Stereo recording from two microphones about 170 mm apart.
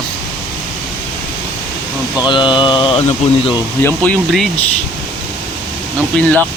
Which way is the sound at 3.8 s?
5° left (ahead or behind).